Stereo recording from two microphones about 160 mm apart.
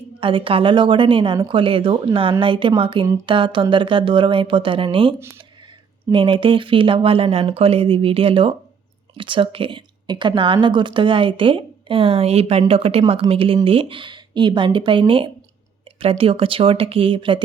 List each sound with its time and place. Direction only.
0.2 s speech: 35° right (ahead or behind)